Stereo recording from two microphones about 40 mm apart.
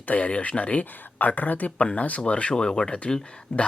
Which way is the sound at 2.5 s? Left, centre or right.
Centre.